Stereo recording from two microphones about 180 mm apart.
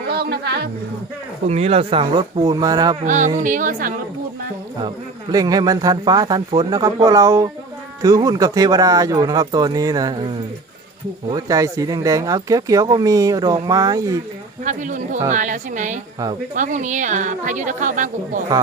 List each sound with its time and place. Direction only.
0.1 s music: 65° right (ahead or behind)
1.5 s speech: 35° right (ahead or behind)
3.1 s a woman's voice: 45° right (ahead or behind)
5.3 s speech: 20° right (ahead or behind)
11.3 s speech: 20° right (ahead or behind)
14.6 s a woman's voice: 45° right (ahead or behind)